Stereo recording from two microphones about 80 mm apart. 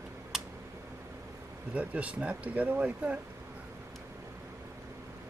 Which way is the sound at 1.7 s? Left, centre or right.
Centre.